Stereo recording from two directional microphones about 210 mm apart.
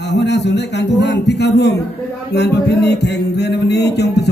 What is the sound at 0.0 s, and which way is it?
Music, 55° left (ahead or behind).